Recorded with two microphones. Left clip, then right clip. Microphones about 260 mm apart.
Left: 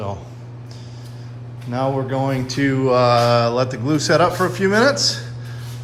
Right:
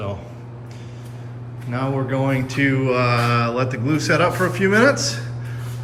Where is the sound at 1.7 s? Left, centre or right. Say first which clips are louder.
Left 2 dB; centre.